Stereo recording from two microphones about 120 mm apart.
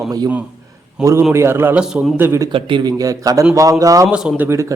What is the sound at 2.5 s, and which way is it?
Speech, 45° right (ahead or behind).